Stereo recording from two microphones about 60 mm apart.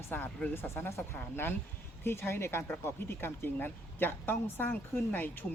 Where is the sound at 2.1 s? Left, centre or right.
Left.